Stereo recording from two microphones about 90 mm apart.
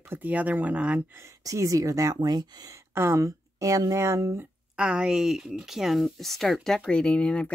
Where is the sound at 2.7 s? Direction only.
25° right (ahead or behind).